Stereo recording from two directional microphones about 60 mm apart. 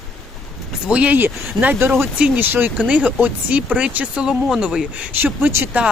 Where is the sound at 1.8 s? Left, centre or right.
Right.